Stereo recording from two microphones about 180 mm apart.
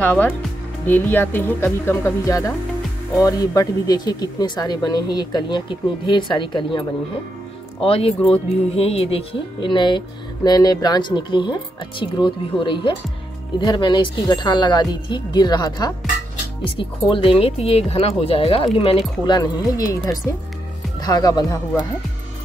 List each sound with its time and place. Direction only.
0.0 s speech: 10° left (ahead or behind); by 6.8 s 25° left (ahead or behind)
7.8 s speech: 30° left (ahead or behind)
19.2 s speech: 25° left (ahead or behind)
21.0 s speech: 20° left (ahead or behind)